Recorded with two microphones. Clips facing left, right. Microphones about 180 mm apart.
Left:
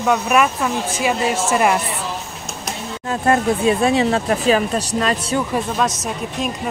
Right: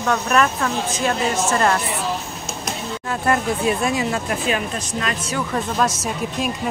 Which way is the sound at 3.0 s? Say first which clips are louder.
Left 4 dB; 25° left (ahead or behind).